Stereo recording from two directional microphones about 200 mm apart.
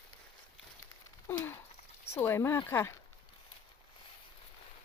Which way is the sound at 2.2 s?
10° left (ahead or behind).